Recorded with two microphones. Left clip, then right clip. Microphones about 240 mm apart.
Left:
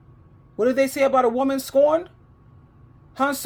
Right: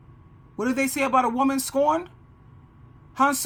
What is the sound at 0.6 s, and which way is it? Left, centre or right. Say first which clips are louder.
A man's voice: left 6 dB; centre.